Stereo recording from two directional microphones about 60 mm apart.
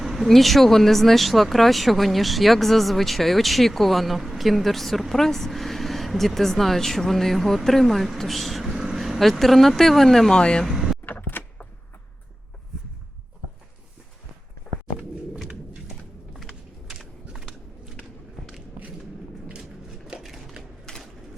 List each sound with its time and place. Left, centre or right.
0.0 s speech: centre
10.4 s speech: centre
11.0 s a sound: left
16.3 s a sound: centre
20.2 s typewriter: centre
20.9 s bird: centre